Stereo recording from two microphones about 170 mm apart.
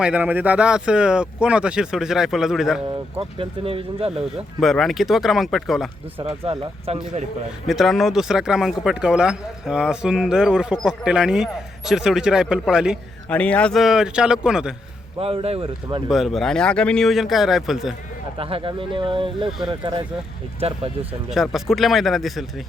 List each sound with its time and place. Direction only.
0.0 s speech: 10° right (ahead or behind)
3.2 s speech: 35° right (ahead or behind)
4.6 s speech: centre (ahead or behind)
6.4 s speech: 35° right (ahead or behind)
7.7 s speech: centre (ahead or behind)
13.2 s speech: 10° left (ahead or behind)
15.2 s speech: 35° right (ahead or behind)
16.0 s speech: centre (ahead or behind)
18.3 s speech: 35° right (ahead or behind)
21.2 s speech: centre (ahead or behind)